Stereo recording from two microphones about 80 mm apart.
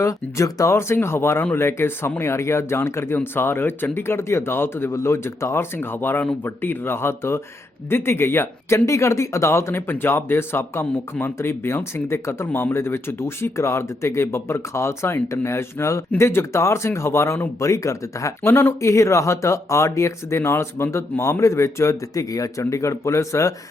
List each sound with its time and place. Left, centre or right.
0.0 s speech: left